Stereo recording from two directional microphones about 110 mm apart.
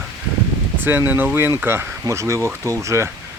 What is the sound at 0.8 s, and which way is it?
Speech, 20° right (ahead or behind).